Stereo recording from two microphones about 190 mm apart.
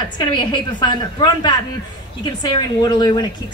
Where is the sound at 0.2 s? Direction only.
25° left (ahead or behind).